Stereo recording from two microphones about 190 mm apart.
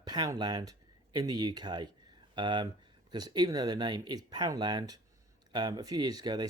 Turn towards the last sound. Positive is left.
turn(degrees=-20)  # may be behind; listen again after turning